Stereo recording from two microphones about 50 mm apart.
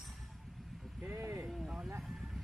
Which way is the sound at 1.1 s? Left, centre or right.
Right.